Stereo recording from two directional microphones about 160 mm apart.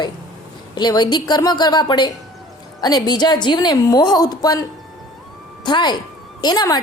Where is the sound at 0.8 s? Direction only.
25° left (ahead or behind).